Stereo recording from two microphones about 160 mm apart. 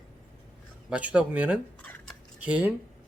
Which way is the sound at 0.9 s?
5° right (ahead or behind).